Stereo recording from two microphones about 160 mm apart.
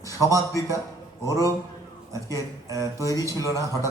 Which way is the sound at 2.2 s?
20° left (ahead or behind).